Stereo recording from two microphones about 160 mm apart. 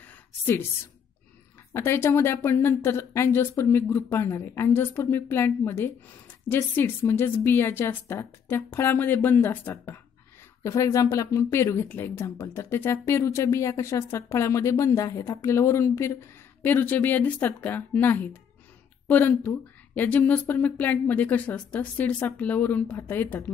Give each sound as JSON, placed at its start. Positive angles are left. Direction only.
{"t": 1.7, "sound": "speech", "side_deg": 15}